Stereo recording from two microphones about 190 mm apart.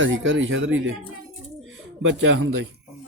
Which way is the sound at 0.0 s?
85° right.